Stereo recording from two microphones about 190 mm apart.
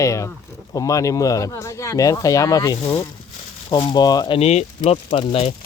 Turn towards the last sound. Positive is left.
turn(degrees=30)  # may be behind; listen again after turning